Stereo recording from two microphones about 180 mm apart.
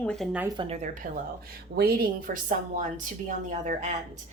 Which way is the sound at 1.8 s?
60° right (ahead or behind).